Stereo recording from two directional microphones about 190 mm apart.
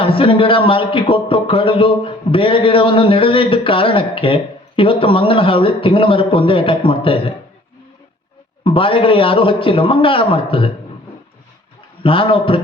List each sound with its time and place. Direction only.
0.0 s a man's voice: 30° left (ahead or behind)
8.6 s a man's voice: 30° left (ahead or behind)
12.0 s a man's voice: 30° left (ahead or behind)